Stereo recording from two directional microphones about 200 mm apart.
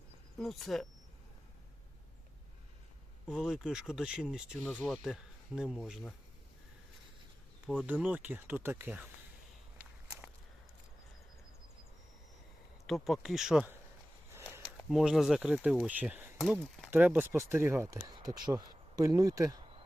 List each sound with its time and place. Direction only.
0.3 s speech: centre (ahead or behind)
3.2 s speech: centre (ahead or behind)
7.9 s speech: 10° right (ahead or behind)
12.9 s speech: centre (ahead or behind)
14.8 s speech: centre (ahead or behind); by 19.5 s 15° right (ahead or behind)